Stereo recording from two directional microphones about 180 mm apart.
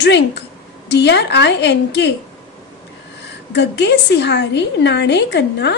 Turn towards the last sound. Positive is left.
turn(degrees=70)  # may be behind; listen again after turning